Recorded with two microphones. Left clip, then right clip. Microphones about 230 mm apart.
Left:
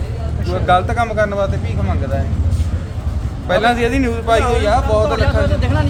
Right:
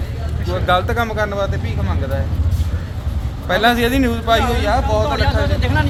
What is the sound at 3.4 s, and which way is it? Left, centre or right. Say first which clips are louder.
A man's voice: left 1 dB; centre.